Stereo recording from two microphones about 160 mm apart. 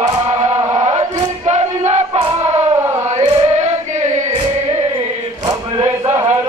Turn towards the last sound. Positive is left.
turn(degrees=-15)  # may be behind; listen again after turning